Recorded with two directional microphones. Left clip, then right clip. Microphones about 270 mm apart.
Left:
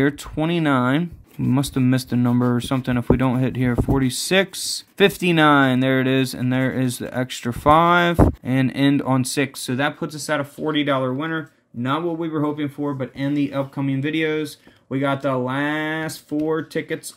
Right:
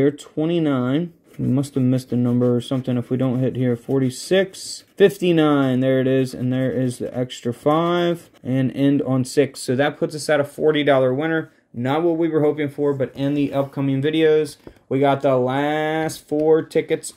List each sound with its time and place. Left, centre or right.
0.0 s speech: left; by 17.0 s centre